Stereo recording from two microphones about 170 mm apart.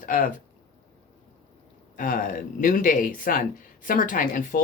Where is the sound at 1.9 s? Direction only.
50° left (ahead or behind).